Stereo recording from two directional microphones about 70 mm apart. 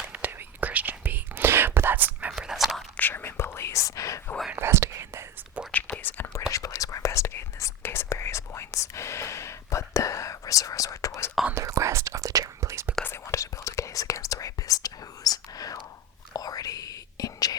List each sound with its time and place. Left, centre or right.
0.1 s whispering: right
2.3 s a sound: centre
3.0 s whispering: left
4.5 s whispering: right
5.7 s whispering: left
6.5 s whispering: left
11.5 s whispering: right
13.1 s whispering: left